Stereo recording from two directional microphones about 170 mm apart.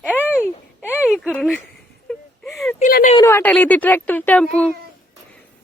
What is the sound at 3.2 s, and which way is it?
Speech, 15° left (ahead or behind).